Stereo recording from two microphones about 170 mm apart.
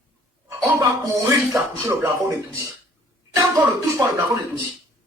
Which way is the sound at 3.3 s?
15° right (ahead or behind).